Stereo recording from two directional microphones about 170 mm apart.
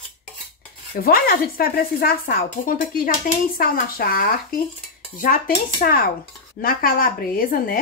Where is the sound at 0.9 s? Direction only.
60° left (ahead or behind).